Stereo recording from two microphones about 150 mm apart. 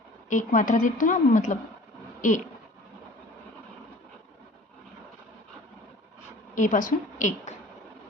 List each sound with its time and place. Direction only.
0.3 s a woman's voice: 60° left (ahead or behind)
6.5 s a woman's voice: 60° left (ahead or behind)